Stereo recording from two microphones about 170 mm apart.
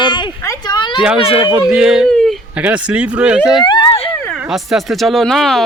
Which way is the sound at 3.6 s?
25° left (ahead or behind).